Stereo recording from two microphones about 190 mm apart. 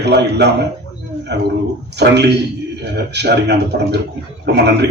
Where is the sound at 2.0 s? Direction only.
60° right (ahead or behind).